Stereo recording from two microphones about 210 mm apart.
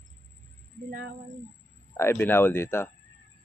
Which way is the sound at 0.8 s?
45° right (ahead or behind).